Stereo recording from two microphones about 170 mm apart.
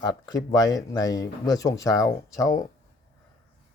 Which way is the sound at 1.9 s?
5° right (ahead or behind).